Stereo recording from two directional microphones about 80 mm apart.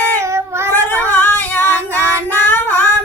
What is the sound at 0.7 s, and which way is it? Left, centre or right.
Female singing, left.